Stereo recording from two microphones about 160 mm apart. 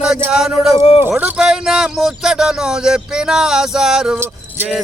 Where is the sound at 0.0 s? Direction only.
5° right (ahead or behind).